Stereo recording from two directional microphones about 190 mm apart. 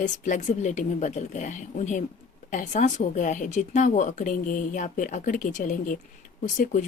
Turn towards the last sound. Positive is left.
turn(degrees=40)  # may be behind; listen again after turning